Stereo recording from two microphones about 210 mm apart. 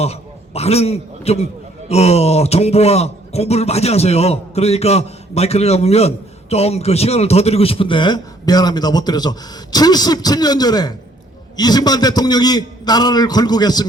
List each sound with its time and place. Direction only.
0.0 s a man's voice: 30° left (ahead or behind)